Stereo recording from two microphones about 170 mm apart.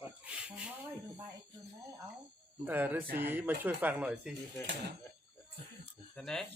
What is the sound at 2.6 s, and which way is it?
Speech, 10° right (ahead or behind).